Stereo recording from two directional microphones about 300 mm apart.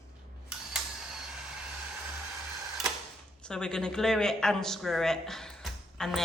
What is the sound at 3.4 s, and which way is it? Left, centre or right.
A man's voice, centre.